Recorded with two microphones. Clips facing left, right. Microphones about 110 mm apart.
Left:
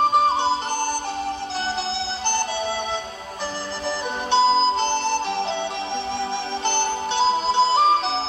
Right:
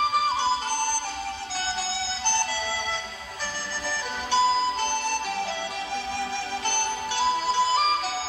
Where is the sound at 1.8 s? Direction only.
20° left (ahead or behind).